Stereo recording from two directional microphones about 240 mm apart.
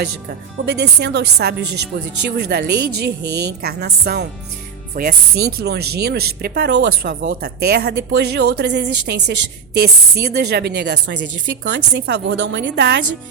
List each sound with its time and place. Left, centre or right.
0.5 s a woman's voice: right